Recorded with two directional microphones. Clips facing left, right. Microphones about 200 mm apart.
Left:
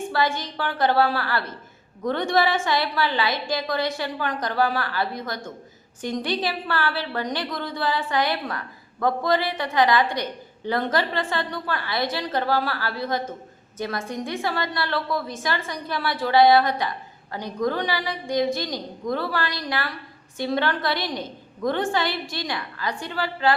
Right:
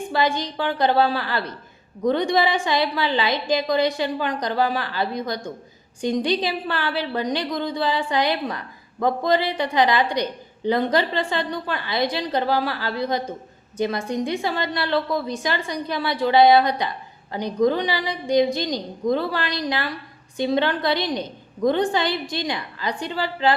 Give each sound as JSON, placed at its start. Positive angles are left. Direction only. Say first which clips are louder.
{"t": 0.1, "sound": "a woman's voice", "louder": "right 4 dB", "side_deg": -20}